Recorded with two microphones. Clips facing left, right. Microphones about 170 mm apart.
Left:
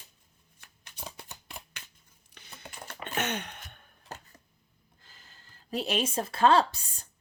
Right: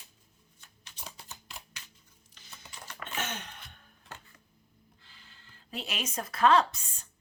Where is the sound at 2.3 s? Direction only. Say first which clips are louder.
Left 4 dB; 60° left (ahead or behind).